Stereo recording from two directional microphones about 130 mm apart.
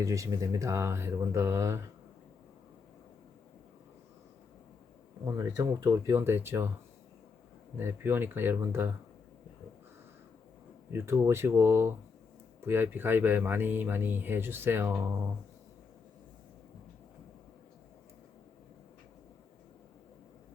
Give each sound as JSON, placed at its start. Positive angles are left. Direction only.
{"t": 0.0, "sound": "speech", "side_deg": -25}
{"t": 5.2, "sound": "speech", "side_deg": -25}
{"t": 7.8, "sound": "speech", "side_deg": -20}
{"t": 10.9, "sound": "speech", "side_deg": -20}